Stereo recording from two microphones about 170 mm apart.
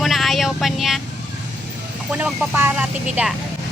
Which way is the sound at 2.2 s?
10° right (ahead or behind).